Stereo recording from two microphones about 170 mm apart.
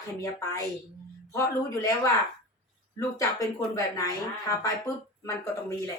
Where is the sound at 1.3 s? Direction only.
20° left (ahead or behind).